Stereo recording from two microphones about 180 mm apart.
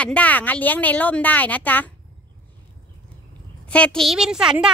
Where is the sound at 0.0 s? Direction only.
5° left (ahead or behind).